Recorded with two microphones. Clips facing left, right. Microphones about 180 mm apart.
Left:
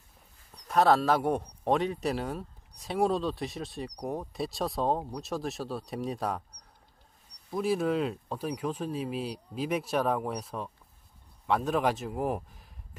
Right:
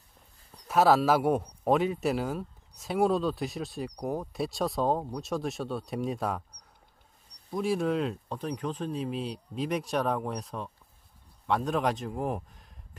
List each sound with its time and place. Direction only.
0.7 s speech: 5° right (ahead or behind)
7.5 s speech: centre (ahead or behind)